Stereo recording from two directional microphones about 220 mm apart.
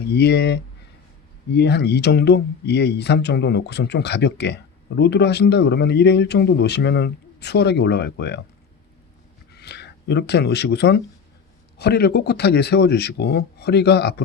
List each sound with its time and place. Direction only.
0.0 s speech: 50° left (ahead or behind)
9.5 s speech: 50° left (ahead or behind)